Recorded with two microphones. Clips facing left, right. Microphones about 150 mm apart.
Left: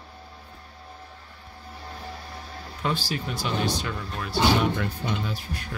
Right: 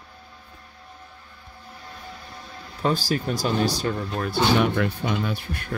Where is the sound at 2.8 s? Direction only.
40° right (ahead or behind).